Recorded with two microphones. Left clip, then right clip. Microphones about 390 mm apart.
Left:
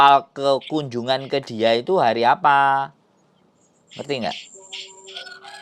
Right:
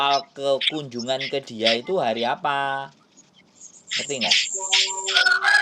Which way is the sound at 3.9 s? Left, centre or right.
Centre.